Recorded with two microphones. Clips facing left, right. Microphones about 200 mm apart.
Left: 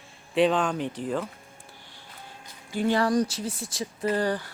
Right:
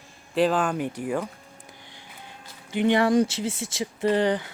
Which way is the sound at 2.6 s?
20° right (ahead or behind).